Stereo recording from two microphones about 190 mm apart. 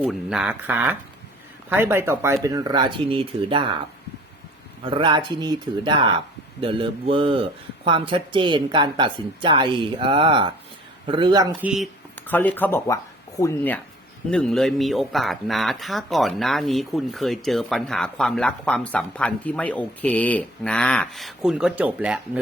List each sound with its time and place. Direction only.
0.0 s a man's voice: centre (ahead or behind); by 3.8 s 25° right (ahead or behind)
4.9 s a man's voice: 25° right (ahead or behind)
11.6 s speech: centre (ahead or behind)
12.1 s speech: 10° left (ahead or behind)
14.3 s speech: 5° left (ahead or behind)